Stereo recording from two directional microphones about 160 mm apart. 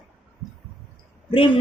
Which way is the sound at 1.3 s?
30° left (ahead or behind).